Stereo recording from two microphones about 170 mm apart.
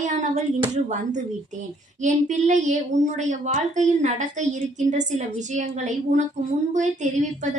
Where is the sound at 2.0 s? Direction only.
45° right (ahead or behind).